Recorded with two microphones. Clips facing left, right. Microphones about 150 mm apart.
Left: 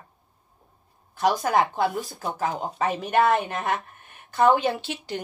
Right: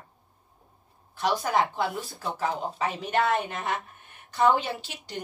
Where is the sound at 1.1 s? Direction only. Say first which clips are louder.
Left 3 dB; 50° left (ahead or behind).